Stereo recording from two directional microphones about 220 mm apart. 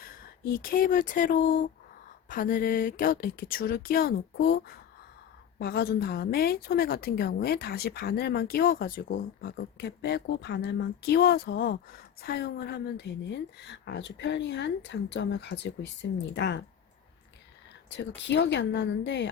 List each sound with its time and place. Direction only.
0.6 s a woman's voice: 40° left (ahead or behind)
17.8 s a woman's voice: 55° left (ahead or behind)